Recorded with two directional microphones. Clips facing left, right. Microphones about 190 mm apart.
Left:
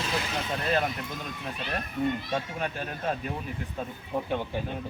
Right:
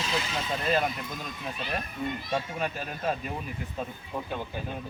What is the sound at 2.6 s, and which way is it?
Speech, 5° right (ahead or behind).